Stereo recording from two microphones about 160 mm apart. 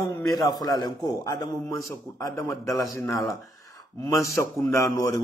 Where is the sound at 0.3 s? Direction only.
25° left (ahead or behind).